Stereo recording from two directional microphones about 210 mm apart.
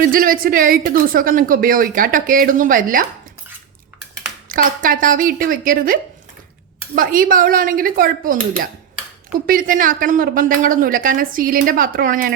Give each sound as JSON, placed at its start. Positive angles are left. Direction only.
{"t": 0.0, "sound": "a woman's voice", "side_deg": -40}
{"t": 4.4, "sound": "a woman's voice", "side_deg": -40}
{"t": 9.5, "sound": "a woman's voice", "side_deg": -40}